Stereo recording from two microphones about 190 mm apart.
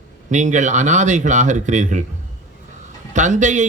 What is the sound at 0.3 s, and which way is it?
A man's voice, 40° right (ahead or behind).